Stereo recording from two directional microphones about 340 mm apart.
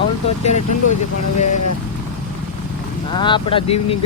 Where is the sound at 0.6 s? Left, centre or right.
Left.